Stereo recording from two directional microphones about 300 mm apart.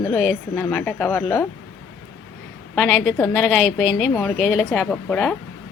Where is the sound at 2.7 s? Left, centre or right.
Centre.